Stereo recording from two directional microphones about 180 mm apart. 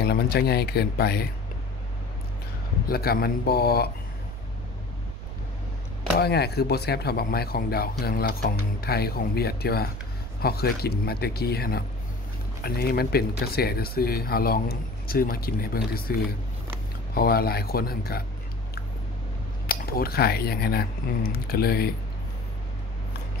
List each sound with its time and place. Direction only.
0.0 s speech: 60° left (ahead or behind)
2.9 s speech: 60° left (ahead or behind)
6.1 s speech: 65° left (ahead or behind)
19.7 s speech: 60° left (ahead or behind)